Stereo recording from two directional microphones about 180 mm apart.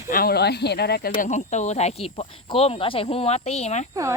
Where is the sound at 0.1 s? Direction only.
55° left (ahead or behind); by 3.8 s 35° left (ahead or behind).